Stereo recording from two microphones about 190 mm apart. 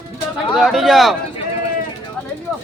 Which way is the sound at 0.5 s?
Centre (ahead or behind).